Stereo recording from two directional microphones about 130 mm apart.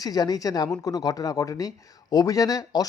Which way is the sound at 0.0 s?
30° left (ahead or behind).